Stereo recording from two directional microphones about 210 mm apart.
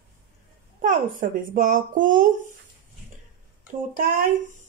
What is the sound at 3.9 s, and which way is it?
Speech, 40° right (ahead or behind).